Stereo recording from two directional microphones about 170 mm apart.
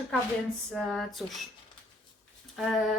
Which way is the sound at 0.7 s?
Centre (ahead or behind).